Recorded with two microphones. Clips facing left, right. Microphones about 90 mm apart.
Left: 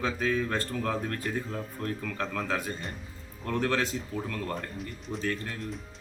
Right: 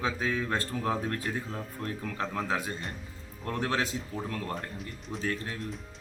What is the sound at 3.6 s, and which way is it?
Speech, 15° right (ahead or behind).